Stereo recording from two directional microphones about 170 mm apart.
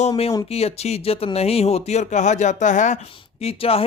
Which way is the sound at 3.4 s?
35° left (ahead or behind).